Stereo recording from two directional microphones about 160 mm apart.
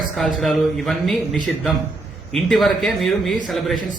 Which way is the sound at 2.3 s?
Centre (ahead or behind).